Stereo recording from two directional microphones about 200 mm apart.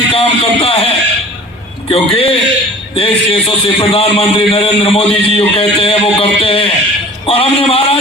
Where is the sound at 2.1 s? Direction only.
30° left (ahead or behind).